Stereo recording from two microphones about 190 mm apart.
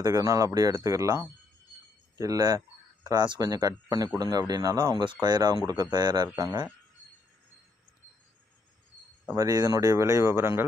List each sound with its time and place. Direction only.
0.0 s speech: 20° right (ahead or behind)
9.3 s speech: 20° right (ahead or behind)